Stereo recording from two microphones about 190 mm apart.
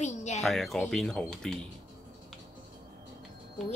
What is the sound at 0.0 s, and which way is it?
Music, 35° left (ahead or behind).